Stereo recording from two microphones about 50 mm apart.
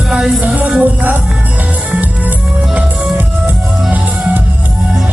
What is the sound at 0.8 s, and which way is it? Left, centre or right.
Music, right.